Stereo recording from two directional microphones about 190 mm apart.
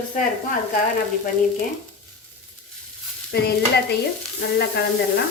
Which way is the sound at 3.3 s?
55° left (ahead or behind).